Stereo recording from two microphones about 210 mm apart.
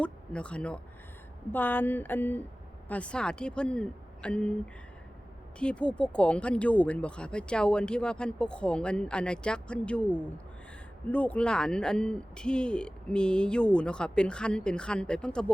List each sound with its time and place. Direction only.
0.0 s speech: 5° left (ahead or behind)
5.5 s speech: 5° left (ahead or behind)